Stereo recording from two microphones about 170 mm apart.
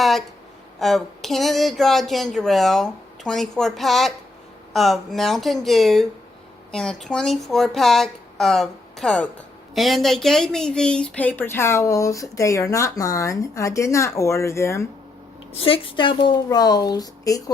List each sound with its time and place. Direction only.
0.0 s a sound: centre (ahead or behind)
0.8 s a woman's voice: centre (ahead or behind); by 14.8 s 15° left (ahead or behind)
15.5 s speech: 30° left (ahead or behind)